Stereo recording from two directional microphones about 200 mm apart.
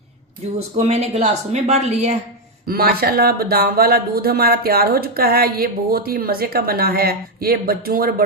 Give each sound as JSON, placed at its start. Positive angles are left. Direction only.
{"t": 0.8, "sound": "a woman's voice", "side_deg": -30}
{"t": 2.6, "sound": "speech", "side_deg": -50}